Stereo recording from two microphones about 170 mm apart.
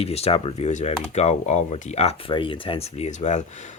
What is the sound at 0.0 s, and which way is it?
Speech, 35° left (ahead or behind).